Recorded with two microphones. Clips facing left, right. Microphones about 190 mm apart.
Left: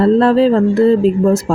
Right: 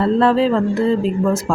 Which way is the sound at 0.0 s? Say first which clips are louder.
Left 5 dB; 40° left (ahead or behind).